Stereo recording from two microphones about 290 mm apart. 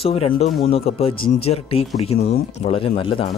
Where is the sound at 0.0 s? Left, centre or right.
Centre.